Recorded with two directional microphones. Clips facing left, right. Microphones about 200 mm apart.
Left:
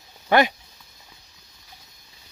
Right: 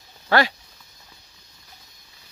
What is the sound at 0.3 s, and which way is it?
Speech, 20° left (ahead or behind).